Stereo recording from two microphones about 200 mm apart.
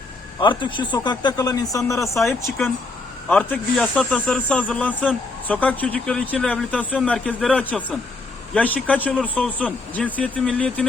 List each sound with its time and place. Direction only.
0.3 s speech: 25° left (ahead or behind)
2.1 s speech: centre (ahead or behind)